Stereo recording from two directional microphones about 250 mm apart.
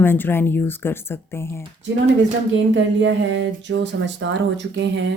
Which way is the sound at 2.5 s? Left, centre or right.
Right.